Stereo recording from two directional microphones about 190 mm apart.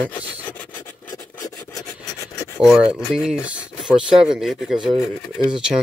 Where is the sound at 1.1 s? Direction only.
20° left (ahead or behind).